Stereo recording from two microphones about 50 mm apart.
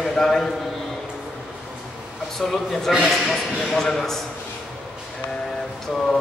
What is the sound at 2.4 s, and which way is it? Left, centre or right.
A man's voice, centre.